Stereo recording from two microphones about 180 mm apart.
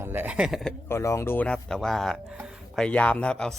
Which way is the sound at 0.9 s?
15° left (ahead or behind).